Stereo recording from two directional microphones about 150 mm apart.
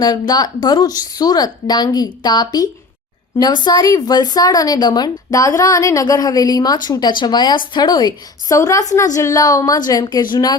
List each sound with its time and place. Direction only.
0.0 s speech: 25° left (ahead or behind)